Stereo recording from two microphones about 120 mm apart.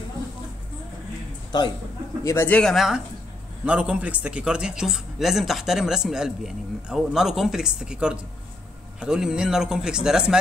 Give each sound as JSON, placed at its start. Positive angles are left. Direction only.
{"t": 1.5, "sound": "a man's voice", "side_deg": 35}
{"t": 2.2, "sound": "speech", "side_deg": 20}
{"t": 2.6, "sound": "a man's voice", "side_deg": 0}